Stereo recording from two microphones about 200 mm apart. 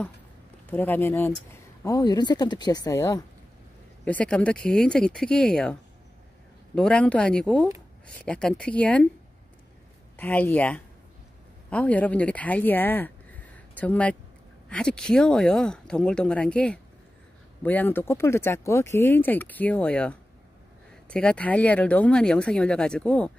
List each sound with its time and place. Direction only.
0.7 s speech: 10° left (ahead or behind)
10.1 s speech: 10° left (ahead or behind)